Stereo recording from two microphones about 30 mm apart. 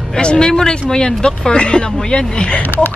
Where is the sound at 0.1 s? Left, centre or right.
Left.